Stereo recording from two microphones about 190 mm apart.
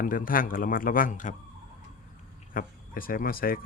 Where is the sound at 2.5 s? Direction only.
50° left (ahead or behind).